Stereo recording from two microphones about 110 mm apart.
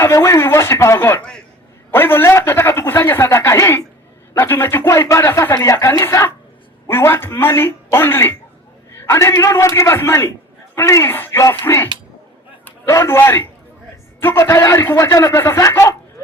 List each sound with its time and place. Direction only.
0.0 s a man's voice: 25° left (ahead or behind)